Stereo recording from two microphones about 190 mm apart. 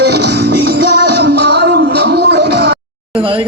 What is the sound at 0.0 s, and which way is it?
Music, 60° right (ahead or behind).